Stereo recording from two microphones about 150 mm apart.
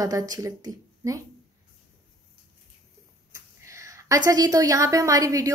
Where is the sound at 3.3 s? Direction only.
20° right (ahead or behind).